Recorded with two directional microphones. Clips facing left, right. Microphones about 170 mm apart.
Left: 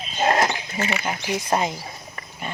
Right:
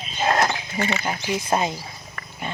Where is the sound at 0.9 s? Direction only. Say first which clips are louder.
Left 1 dB; 15° left (ahead or behind).